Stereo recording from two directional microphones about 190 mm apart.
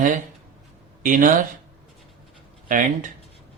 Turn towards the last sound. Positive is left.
turn(degrees=-45)  # may be behind; listen again after turning